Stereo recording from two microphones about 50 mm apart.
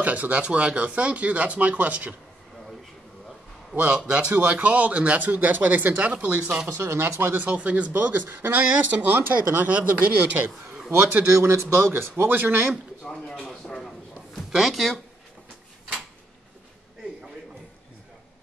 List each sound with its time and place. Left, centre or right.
0.0 s speech: right
3.7 s speech: centre
4.3 s speech: right
6.2 s speech: right
6.7 s speech: right
7.4 s speech: right
8.6 s speech: right
9.7 s speech: right
10.0 s speech: right
11.3 s speech: right
11.9 s speech: right
13.0 s speech: centre
14.5 s speech: centre